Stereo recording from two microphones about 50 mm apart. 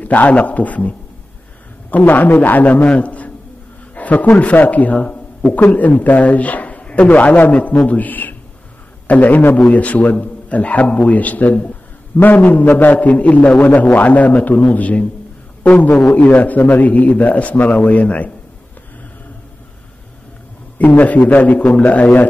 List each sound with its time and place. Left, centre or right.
0.0 s a man's voice: left
20.7 s a man's voice: left